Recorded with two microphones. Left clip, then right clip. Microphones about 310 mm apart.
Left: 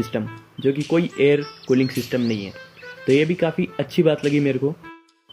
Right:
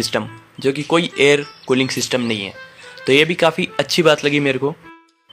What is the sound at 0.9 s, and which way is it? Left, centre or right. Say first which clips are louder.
Speech: right 5 dB; centre.